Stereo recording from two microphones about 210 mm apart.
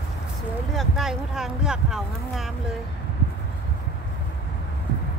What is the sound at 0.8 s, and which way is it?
Speech, centre (ahead or behind).